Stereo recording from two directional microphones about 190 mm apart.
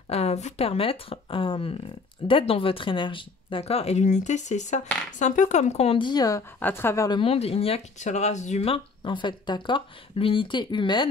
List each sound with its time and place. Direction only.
0.1 s speech: 35° left (ahead or behind); by 7.2 s 15° left (ahead or behind)
7.2 s speech: 30° left (ahead or behind)